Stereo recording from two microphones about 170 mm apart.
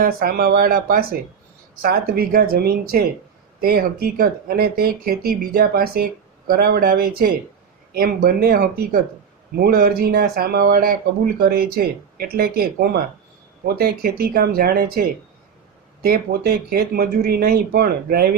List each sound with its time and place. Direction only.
0.0 s speech: 60° right (ahead or behind)